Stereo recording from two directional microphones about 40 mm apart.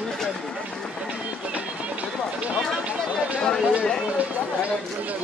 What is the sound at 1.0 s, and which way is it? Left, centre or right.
Music, right.